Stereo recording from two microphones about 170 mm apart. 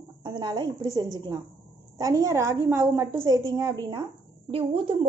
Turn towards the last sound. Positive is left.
turn(degrees=-30)  # may be behind; listen again after turning